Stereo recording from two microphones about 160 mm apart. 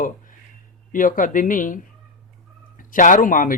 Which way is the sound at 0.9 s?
55° left (ahead or behind).